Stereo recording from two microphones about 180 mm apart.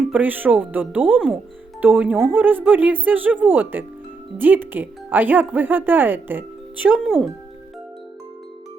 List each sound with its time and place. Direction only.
0.1 s speech: 10° right (ahead or behind)